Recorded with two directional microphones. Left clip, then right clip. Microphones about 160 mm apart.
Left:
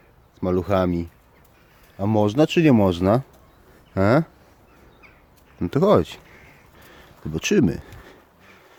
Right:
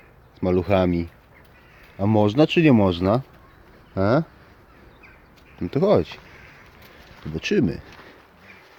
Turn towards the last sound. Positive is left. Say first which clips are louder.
# left 2 dB
turn(degrees=45)  # may be behind; listen again after turning